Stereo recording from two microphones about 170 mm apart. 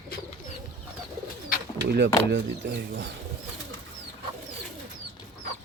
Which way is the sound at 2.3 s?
90° right.